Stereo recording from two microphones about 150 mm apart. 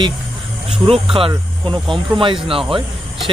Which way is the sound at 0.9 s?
35° right (ahead or behind).